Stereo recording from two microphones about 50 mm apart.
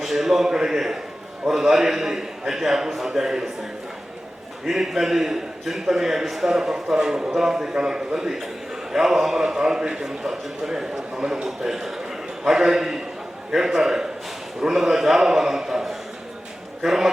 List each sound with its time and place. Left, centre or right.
0.0 s a man's voice: centre
4.6 s a man's voice: centre